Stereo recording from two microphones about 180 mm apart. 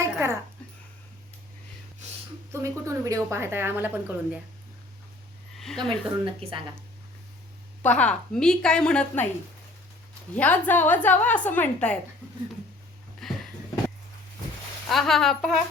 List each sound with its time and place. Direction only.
0.0 s a sound: 15° right (ahead or behind)
2.5 s a woman's voice: 15° right (ahead or behind)
5.5 s speech: centre (ahead or behind)
6.2 s a woman's voice: 30° right (ahead or behind)
7.8 s a woman's voice: 10° left (ahead or behind)
10.3 s a woman's voice: 10° left (ahead or behind)
13.2 s a woman's voice: centre (ahead or behind)
14.8 s a woman's voice: centre (ahead or behind)